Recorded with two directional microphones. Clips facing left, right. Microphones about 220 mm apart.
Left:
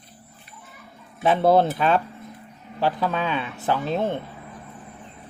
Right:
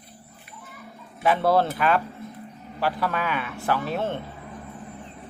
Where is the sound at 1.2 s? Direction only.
20° left (ahead or behind).